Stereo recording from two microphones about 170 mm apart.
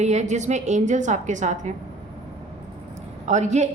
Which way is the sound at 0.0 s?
40° right (ahead or behind).